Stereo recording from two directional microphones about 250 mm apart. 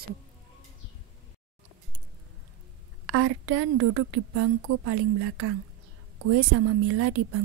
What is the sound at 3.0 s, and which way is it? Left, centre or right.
A woman's voice, right.